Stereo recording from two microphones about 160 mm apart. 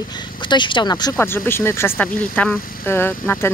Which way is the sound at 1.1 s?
15° left (ahead or behind).